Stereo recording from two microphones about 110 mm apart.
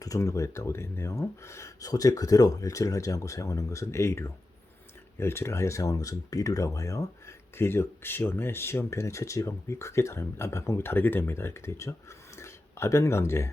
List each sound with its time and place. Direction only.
0.0 s speech: 30° left (ahead or behind)